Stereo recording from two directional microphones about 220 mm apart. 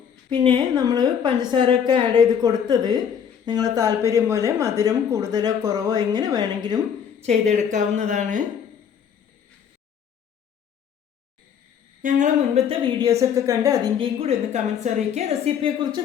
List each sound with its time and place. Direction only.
0.3 s a woman's voice: 20° right (ahead or behind)
7.2 s a woman's voice: 30° right (ahead or behind)
12.0 s a woman's voice: 30° right (ahead or behind)